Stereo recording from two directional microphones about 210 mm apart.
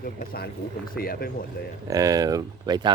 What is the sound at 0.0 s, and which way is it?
Speech, 45° left (ahead or behind).